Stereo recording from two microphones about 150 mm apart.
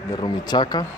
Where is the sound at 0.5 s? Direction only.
30° left (ahead or behind).